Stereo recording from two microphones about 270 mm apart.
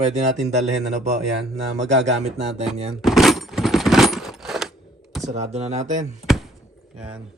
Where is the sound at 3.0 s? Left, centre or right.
Centre.